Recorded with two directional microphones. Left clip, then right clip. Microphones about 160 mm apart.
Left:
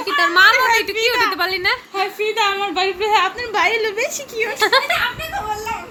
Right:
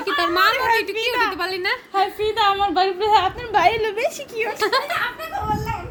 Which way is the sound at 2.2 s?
75° right (ahead or behind).